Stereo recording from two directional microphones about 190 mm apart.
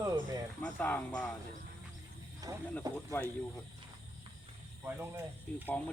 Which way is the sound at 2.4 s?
20° right (ahead or behind).